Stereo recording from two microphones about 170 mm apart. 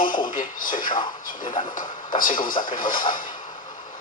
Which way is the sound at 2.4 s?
55° left (ahead or behind).